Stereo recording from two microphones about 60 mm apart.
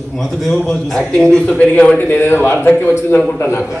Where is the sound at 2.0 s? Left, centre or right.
Left.